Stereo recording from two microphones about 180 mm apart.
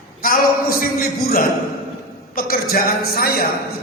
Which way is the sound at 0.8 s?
50° left (ahead or behind).